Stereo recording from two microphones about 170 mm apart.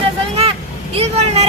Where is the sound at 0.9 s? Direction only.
35° right (ahead or behind).